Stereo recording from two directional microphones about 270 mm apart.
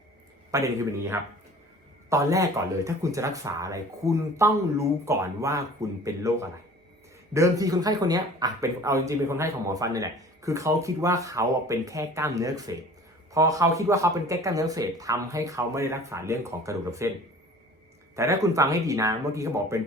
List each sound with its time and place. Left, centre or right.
0.5 s speech: centre
18.2 s speech: centre